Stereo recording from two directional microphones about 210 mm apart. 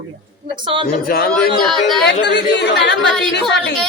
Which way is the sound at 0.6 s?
25° right (ahead or behind).